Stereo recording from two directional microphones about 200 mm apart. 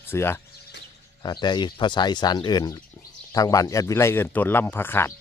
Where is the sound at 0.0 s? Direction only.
10° left (ahead or behind).